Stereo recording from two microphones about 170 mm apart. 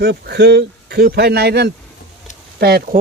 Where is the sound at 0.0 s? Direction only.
80° right.